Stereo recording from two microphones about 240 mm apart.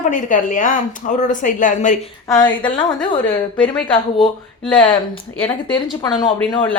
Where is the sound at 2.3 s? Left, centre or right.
Centre.